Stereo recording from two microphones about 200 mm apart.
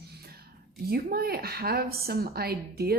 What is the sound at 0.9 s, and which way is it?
A woman's voice, 50° right (ahead or behind).